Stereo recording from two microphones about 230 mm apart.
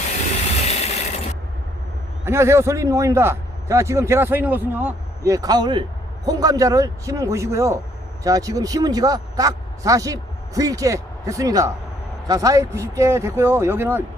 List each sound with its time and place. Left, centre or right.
0.6 s mechanisms: left
2.2 s a man's voice: centre